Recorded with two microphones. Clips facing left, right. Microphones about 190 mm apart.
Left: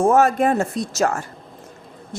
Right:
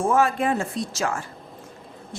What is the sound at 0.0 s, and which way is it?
A woman's voice, 40° left (ahead or behind).